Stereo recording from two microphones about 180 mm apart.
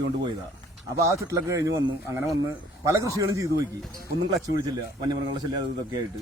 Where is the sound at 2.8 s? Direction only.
20° right (ahead or behind).